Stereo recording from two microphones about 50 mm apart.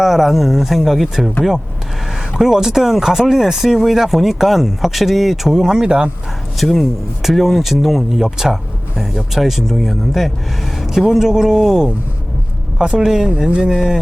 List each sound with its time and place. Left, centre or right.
0.0 s speech: centre
2.4 s speech: centre
6.6 s speech: centre
10.8 s a sound: centre
11.1 s speech: centre